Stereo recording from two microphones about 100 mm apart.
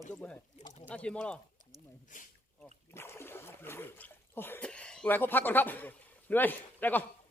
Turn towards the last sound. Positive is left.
turn(degrees=20)  # may be behind; listen again after turning